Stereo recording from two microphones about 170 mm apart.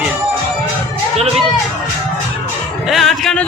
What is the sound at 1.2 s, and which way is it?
Speech, 35° right (ahead or behind).